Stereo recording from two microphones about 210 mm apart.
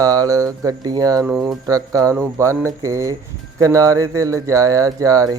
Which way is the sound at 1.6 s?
15° right (ahead or behind).